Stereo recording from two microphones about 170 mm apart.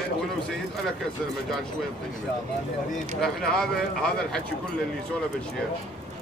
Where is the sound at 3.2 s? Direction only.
5° left (ahead or behind).